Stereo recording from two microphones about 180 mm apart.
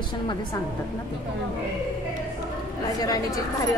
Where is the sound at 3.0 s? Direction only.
20° left (ahead or behind).